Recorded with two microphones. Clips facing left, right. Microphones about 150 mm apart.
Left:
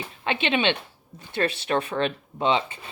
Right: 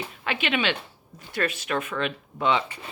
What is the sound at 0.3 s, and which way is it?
Speech, 25° left (ahead or behind).